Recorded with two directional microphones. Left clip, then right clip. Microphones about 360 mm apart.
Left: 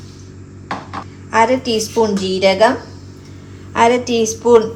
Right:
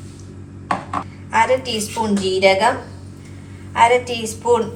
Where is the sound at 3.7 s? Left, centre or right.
Left.